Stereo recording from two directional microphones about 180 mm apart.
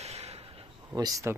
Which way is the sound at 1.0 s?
20° right (ahead or behind).